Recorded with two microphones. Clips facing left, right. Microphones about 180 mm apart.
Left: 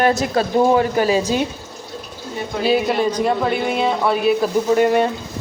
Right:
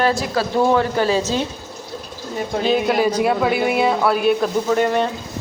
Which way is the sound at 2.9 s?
10° right (ahead or behind).